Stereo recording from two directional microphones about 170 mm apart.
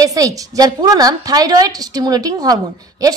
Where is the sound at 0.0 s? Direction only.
20° right (ahead or behind).